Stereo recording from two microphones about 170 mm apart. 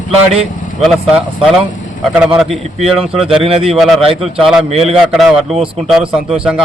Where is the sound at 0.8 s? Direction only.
Centre (ahead or behind).